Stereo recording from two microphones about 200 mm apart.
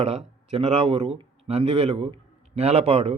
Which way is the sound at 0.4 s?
30° right (ahead or behind).